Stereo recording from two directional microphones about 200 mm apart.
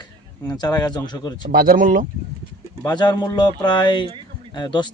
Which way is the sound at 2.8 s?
20° left (ahead or behind).